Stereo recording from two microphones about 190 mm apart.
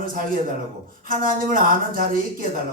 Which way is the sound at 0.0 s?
45° right (ahead or behind).